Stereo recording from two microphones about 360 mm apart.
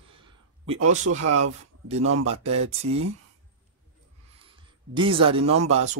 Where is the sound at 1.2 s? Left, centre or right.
Right.